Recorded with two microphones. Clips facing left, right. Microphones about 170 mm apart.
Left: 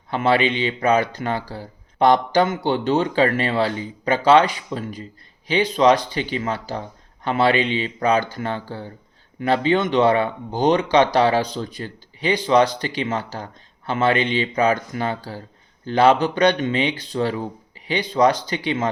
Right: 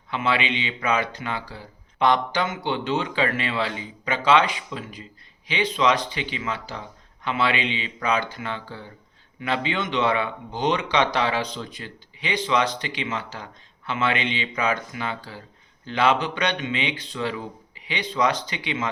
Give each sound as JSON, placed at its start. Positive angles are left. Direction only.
{"t": 0.1, "sound": "speech", "side_deg": 40}